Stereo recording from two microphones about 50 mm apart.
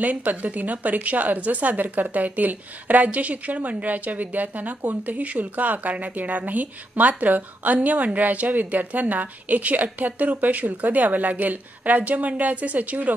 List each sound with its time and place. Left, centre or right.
0.0 s a woman's voice: right